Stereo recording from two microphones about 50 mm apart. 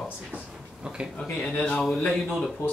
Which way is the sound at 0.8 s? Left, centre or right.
Centre.